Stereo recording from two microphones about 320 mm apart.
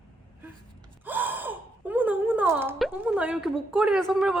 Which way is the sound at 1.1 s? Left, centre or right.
Centre.